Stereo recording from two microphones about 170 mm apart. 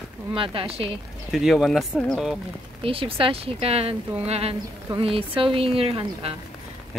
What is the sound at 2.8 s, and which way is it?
Speech, 35° right (ahead or behind).